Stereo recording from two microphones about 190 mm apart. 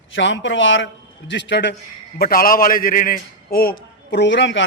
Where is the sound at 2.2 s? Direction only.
50° left (ahead or behind).